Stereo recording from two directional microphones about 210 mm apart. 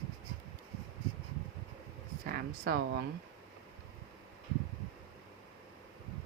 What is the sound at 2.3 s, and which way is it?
Speech, 50° right (ahead or behind).